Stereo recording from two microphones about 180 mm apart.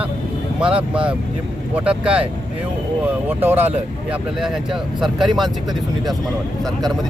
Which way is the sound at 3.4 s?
10° right (ahead or behind).